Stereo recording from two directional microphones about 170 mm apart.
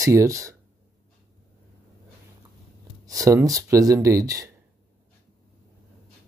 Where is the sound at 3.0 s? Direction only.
20° right (ahead or behind).